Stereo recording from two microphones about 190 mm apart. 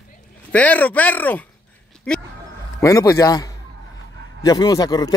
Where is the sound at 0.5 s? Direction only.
10° left (ahead or behind).